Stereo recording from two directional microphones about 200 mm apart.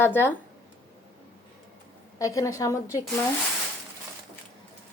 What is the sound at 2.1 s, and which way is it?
Speech, 15° left (ahead or behind).